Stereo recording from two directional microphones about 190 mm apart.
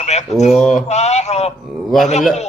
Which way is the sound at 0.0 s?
35° left (ahead or behind).